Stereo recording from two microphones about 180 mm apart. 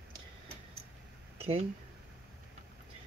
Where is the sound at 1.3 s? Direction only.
35° right (ahead or behind).